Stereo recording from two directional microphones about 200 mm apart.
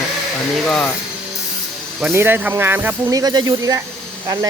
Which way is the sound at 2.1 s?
10° right (ahead or behind).